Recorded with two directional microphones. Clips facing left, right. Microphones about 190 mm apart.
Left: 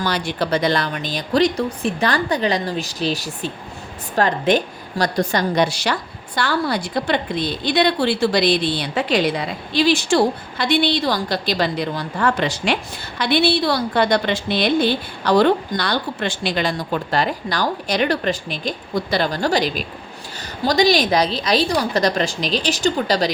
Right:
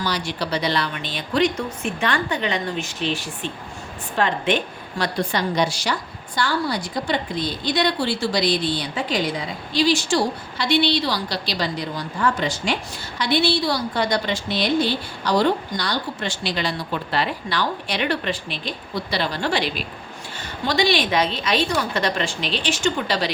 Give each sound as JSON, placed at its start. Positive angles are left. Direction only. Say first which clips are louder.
{"t": 0.0, "sound": "a woman's voice", "louder": "left 4 dB", "side_deg": 50}